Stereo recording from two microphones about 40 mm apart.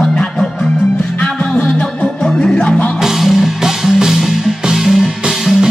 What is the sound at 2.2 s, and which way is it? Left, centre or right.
Music, centre.